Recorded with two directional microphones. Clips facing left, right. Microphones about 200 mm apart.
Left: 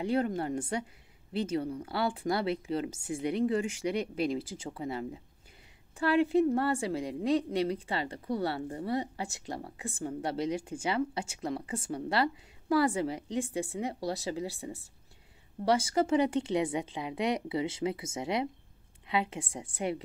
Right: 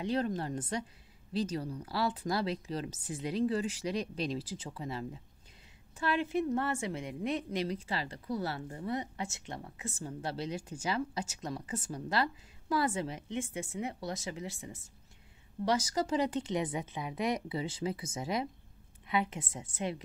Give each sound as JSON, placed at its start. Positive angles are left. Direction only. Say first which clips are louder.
{"t": 0.0, "sound": "a woman's voice", "louder": "left 3 dB", "side_deg": 30}